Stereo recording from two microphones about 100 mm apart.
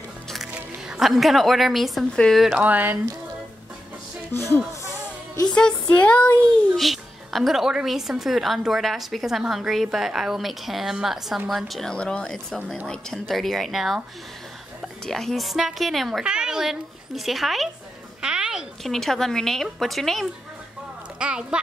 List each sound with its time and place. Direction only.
0.5 s a woman's voice: 10° right (ahead or behind)
2.4 s speech: 10° right (ahead or behind)
4.3 s speech: 25° left (ahead or behind)
5.4 s speech: 10° left (ahead or behind)
6.8 s a woman's voice: centre (ahead or behind)
15.0 s a woman's voice: 5° left (ahead or behind)
21.2 s speech: 10° right (ahead or behind)